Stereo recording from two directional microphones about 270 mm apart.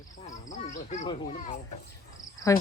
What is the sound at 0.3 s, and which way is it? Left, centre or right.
Speech, left.